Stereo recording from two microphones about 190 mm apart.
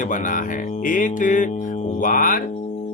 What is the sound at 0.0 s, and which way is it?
Speech, 45° left (ahead or behind).